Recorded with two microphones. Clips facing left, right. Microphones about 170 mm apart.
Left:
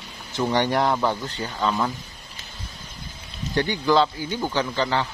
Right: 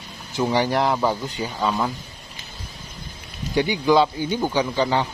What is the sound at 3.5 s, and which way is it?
Speech, 10° right (ahead or behind).